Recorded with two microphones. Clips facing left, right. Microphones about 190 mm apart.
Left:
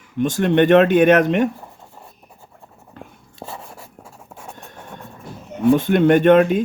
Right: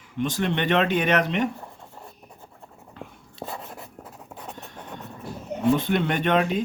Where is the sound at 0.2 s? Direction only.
50° left (ahead or behind).